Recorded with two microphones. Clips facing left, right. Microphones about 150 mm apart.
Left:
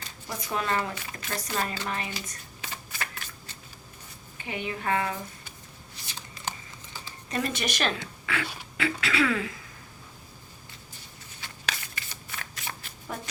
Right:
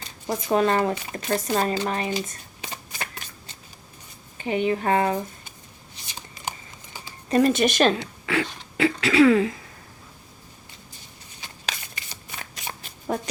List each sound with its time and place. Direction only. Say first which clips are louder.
0.3 s a woman's voice: right 9 dB; 30° right (ahead or behind)
1.1 s a woman's voice: right 8 dB; 25° right (ahead or behind)
2.1 s shuffling cards: right 10 dB; 20° right (ahead or behind)
4.4 s speech: right 8 dB; 30° right (ahead or behind)
6.1 s shuffling cards: right 2 dB; 15° right (ahead or behind)
7.3 s speech: right 12 dB; 35° right (ahead or behind)
7.5 s a woman's voice: right 10 dB; 25° right (ahead or behind)
11.3 s shuffling cards: right 1 dB; 20° right (ahead or behind)